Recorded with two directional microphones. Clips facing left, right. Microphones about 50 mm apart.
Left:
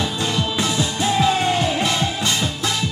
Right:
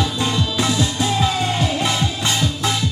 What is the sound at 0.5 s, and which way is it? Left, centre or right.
Music, left.